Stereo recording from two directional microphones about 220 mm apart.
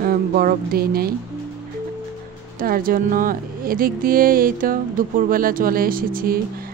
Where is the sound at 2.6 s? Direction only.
40° right (ahead or behind).